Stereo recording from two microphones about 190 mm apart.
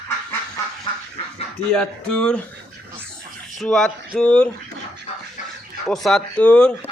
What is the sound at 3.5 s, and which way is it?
Speech, 5° left (ahead or behind).